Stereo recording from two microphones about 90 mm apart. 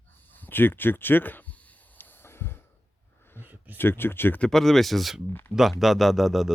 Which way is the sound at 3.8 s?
25° left (ahead or behind).